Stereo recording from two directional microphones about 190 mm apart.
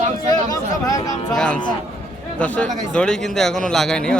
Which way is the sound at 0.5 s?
20° left (ahead or behind).